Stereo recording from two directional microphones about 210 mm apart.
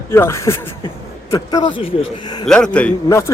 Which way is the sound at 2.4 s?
5° left (ahead or behind).